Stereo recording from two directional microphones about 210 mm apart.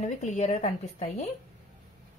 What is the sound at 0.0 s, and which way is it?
Speech, 35° left (ahead or behind).